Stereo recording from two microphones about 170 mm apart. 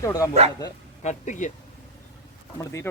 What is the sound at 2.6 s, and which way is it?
Speech, 15° left (ahead or behind).